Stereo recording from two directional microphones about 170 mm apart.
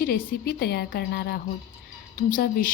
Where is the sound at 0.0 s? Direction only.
65° left (ahead or behind).